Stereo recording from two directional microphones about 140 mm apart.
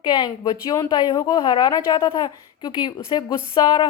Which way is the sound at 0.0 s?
30° left (ahead or behind).